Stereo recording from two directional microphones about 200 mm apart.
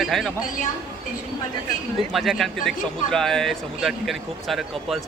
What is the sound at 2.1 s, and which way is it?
A man's voice, centre (ahead or behind).